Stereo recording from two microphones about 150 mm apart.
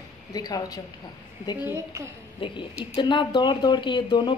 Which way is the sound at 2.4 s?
35° left (ahead or behind).